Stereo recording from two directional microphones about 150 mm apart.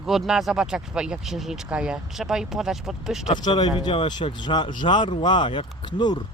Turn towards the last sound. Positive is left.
turn(degrees=30)  # may be behind; listen again after turning